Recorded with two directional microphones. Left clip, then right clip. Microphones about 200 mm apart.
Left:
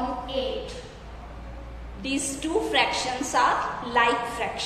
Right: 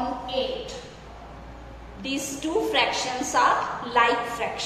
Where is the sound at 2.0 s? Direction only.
15° left (ahead or behind).